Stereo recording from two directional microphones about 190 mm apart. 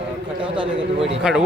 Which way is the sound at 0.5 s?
25° right (ahead or behind).